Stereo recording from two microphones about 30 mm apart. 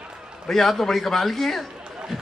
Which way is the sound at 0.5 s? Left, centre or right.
Centre.